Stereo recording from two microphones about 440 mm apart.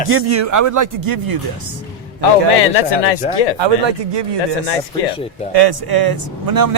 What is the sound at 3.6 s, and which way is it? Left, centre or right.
Speech, right.